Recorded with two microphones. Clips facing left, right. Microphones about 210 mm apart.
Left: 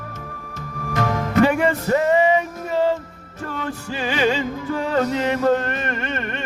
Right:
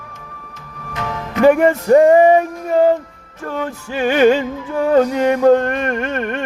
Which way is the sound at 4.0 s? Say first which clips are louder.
Right 9 dB; 55° right (ahead or behind).